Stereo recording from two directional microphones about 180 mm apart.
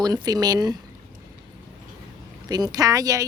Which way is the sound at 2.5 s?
20° right (ahead or behind).